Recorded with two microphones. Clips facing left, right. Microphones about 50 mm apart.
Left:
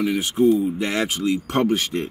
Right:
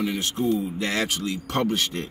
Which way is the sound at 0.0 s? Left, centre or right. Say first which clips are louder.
Left 6 dB; centre.